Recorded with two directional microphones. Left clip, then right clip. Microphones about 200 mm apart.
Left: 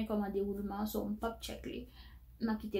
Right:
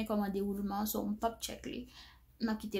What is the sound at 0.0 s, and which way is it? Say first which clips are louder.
A woman's voice: even; 40° right (ahead or behind).